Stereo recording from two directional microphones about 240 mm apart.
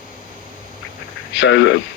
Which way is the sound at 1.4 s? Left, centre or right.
Left.